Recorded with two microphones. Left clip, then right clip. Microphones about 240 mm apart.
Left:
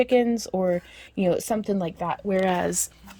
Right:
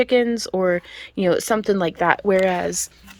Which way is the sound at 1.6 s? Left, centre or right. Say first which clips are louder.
Right 7 dB; right.